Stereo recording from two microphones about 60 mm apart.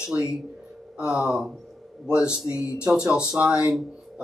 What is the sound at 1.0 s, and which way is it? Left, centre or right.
Speech, centre.